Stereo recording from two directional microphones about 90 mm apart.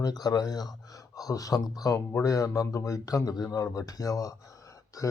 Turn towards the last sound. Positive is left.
turn(degrees=40)  # may be behind; listen again after turning